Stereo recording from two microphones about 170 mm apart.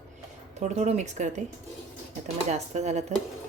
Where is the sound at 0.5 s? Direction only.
45° right (ahead or behind).